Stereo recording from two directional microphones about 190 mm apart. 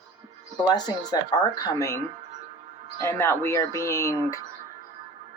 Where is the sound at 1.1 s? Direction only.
20° left (ahead or behind).